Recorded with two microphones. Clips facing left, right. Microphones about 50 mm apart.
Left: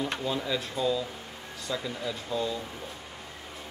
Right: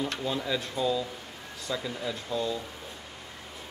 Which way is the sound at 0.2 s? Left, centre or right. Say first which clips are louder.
Even; centre.